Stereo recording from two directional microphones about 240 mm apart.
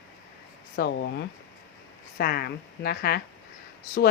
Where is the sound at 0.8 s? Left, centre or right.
Left.